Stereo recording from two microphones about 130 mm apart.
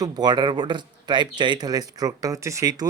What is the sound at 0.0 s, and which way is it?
Speech, 35° right (ahead or behind).